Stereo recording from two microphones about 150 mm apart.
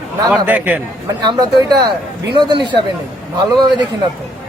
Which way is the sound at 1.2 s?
30° right (ahead or behind).